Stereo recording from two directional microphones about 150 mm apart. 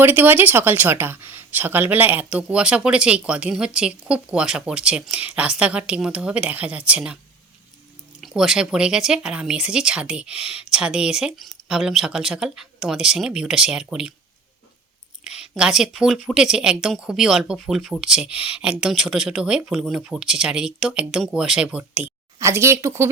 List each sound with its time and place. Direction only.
0.0 s speech: 15° right (ahead or behind)
8.2 s speech: centre (ahead or behind)
15.2 s speech: 5° right (ahead or behind)